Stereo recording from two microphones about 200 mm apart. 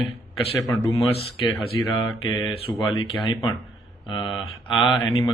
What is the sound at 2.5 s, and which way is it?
Speech, 25° left (ahead or behind).